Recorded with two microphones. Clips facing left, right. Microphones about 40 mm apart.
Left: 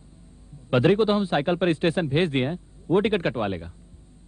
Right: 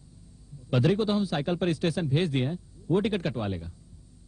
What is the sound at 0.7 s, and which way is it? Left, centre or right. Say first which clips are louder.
A man's voice: left 5 dB; left.